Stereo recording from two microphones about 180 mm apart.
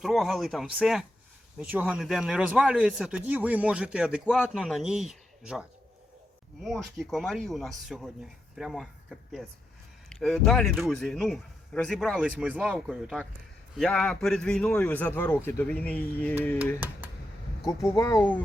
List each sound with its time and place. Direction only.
0.0 s speech: centre (ahead or behind)
12.4 s speech: 5° right (ahead or behind); by 16.3 s 10° left (ahead or behind)
16.8 s speech: 10° right (ahead or behind)
17.7 s speech: 15° left (ahead or behind)